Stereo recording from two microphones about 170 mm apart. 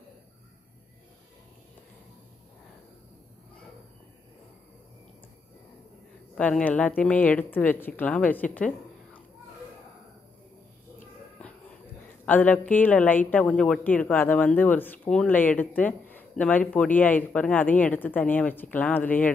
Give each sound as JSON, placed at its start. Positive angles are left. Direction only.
{"t": 6.3, "sound": "speech", "side_deg": 10}
{"t": 8.5, "sound": "a sound", "side_deg": 10}
{"t": 12.3, "sound": "speech", "side_deg": 10}